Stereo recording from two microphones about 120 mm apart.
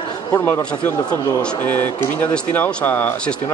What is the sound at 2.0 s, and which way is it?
A man's voice, 15° left (ahead or behind).